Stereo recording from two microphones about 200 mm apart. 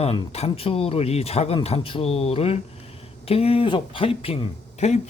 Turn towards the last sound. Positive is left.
turn(degrees=30)  # may be behind; listen again after turning